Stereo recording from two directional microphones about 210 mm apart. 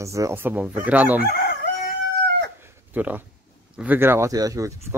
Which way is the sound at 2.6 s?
10° right (ahead or behind).